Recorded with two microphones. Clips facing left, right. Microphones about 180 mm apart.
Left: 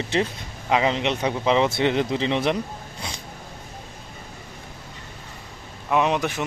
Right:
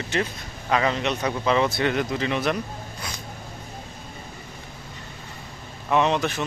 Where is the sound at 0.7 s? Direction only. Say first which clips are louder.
Left 2 dB; 20° left (ahead or behind).